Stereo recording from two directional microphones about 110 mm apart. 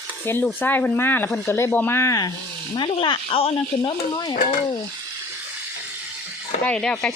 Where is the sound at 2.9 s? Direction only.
55° left (ahead or behind).